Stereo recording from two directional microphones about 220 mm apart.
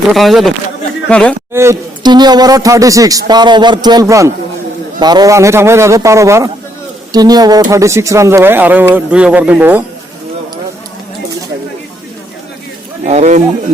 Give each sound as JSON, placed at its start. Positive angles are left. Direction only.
{"t": 0.1, "sound": "speech", "side_deg": 0}
{"t": 1.5, "sound": "speech", "side_deg": -15}
{"t": 13.1, "sound": "speech", "side_deg": -30}